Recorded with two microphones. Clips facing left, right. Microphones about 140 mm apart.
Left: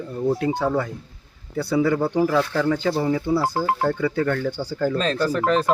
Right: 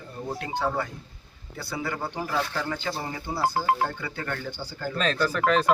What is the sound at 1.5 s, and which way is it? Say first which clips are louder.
Speech: left 12 dB; 70° left (ahead or behind).